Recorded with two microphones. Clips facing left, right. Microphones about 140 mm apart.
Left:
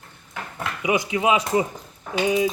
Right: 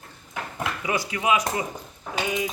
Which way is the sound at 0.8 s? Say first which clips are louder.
Left 8 dB; 15° left (ahead or behind).